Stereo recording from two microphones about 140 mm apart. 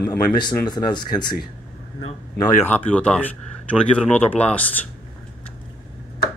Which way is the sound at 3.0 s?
10° left (ahead or behind).